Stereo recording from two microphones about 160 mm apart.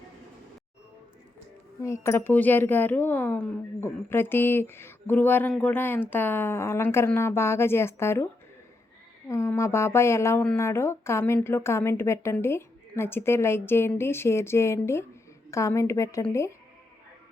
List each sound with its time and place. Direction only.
1.8 s speech: 15° left (ahead or behind)
9.3 s a woman's voice: 15° left (ahead or behind)